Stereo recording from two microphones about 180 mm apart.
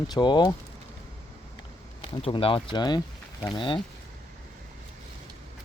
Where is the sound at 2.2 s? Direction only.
30° left (ahead or behind).